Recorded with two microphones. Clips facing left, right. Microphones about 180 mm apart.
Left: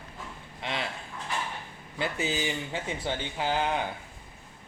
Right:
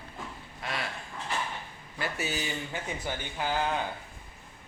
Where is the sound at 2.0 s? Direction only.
20° left (ahead or behind).